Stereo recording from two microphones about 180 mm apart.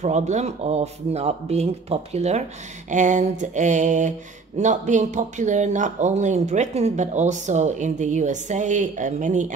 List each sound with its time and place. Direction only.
0.0 s speech: 40° right (ahead or behind)